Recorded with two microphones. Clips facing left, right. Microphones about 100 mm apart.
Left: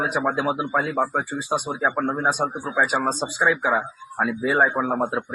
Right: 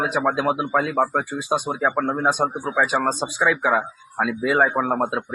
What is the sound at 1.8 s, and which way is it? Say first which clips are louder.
Speech: right 1 dB; 65° right (ahead or behind).